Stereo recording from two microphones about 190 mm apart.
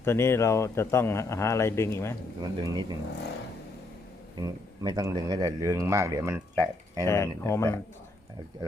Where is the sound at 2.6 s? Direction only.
20° right (ahead or behind).